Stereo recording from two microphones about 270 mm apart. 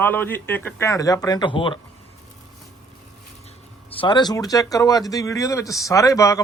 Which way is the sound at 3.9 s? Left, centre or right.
Centre.